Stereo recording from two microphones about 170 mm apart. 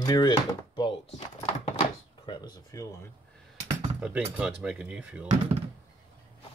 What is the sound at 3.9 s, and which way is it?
Speech, 5° right (ahead or behind).